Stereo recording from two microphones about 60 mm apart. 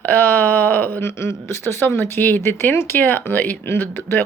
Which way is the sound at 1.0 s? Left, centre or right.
Left.